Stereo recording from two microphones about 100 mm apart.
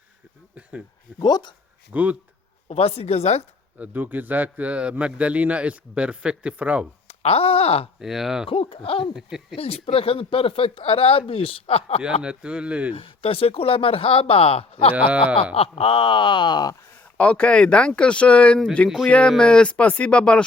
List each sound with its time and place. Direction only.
1.2 s speech: 45° left (ahead or behind)
1.9 s speech: 15° right (ahead or behind)
2.6 s a woman's voice: 85° left
3.8 s speech: 15° right (ahead or behind)
7.1 s speech: 90° left
7.9 s speech: 5° right (ahead or behind)
8.4 s speech: 65° left (ahead or behind)
9.1 s speech: 5° right (ahead or behind)
9.6 s speech: 85° left
12.2 s speech: 10° right (ahead or behind)
12.9 s speech: 70° left (ahead or behind); by 16.7 s 45° left (ahead or behind)
17.2 s speech: 10° left (ahead or behind)